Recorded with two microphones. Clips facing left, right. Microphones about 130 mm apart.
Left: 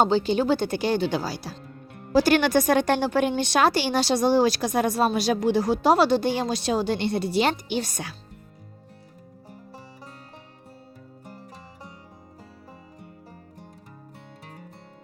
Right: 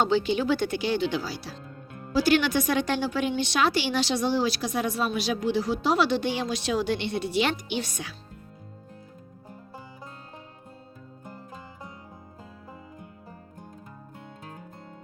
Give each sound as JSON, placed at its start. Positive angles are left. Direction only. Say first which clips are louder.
{"t": 0.0, "sound": "a woman's voice", "louder": "left 3 dB", "side_deg": 35}